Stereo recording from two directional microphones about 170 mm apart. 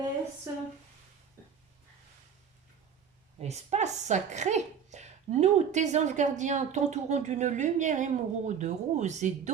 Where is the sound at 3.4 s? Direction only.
40° right (ahead or behind).